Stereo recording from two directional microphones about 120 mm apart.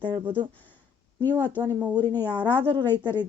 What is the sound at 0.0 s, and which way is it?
Speech, 45° right (ahead or behind).